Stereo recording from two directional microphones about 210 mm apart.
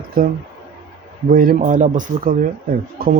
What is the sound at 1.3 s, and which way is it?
Speech, 45° right (ahead or behind).